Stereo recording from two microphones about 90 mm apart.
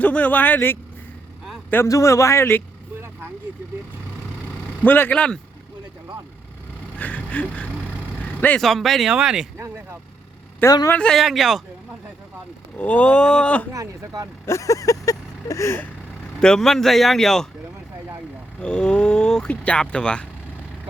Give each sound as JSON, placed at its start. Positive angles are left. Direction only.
{"t": 0.0, "sound": "speech", "side_deg": 15}
{"t": 1.9, "sound": "a man's voice", "side_deg": 35}
{"t": 4.8, "sound": "speech", "side_deg": 20}
{"t": 7.0, "sound": "vehicle", "side_deg": 20}
{"t": 8.6, "sound": "speech", "side_deg": 0}
{"t": 9.6, "sound": "speech", "side_deg": -30}
{"t": 10.6, "sound": "speech", "side_deg": 25}
{"t": 10.9, "sound": "speech", "side_deg": 10}
{"t": 11.2, "sound": "speech", "side_deg": 0}
{"t": 12.7, "sound": "speech", "side_deg": 15}
{"t": 13.7, "sound": "speech", "side_deg": -40}
{"t": 14.4, "sound": "vehicle", "side_deg": 35}
{"t": 16.4, "sound": "speech", "side_deg": 5}
{"t": 18.6, "sound": "speech", "side_deg": 10}